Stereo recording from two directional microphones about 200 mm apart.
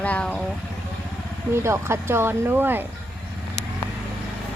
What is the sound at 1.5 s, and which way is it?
Speech, 15° right (ahead or behind).